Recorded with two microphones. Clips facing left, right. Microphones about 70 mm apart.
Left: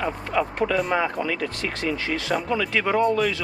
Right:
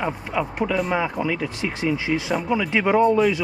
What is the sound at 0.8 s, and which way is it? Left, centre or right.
Speech, centre.